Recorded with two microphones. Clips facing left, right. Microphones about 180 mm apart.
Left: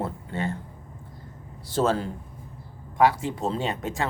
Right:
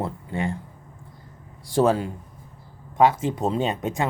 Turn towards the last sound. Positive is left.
turn(degrees=-20)  # may be behind; listen again after turning